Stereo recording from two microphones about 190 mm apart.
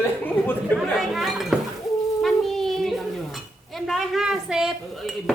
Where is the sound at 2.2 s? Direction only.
Centre (ahead or behind).